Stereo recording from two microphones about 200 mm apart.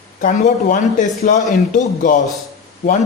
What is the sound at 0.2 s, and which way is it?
A man's voice, 40° left (ahead or behind).